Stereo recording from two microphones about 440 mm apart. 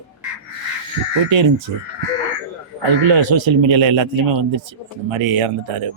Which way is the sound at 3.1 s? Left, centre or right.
Right.